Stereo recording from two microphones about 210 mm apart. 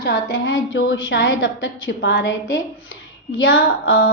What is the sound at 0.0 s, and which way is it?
A woman's voice, 55° left (ahead or behind).